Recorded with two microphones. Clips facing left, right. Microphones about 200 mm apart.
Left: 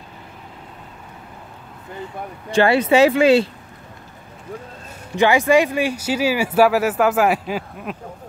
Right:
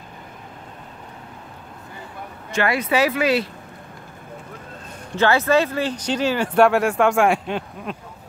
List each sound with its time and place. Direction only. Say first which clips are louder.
2.5 s speech: left 6 dB; 30° left (ahead or behind)
5.1 s speech: left 3 dB; 15° left (ahead or behind)